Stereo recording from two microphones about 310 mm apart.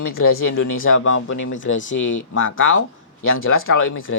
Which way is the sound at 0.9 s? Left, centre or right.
Left.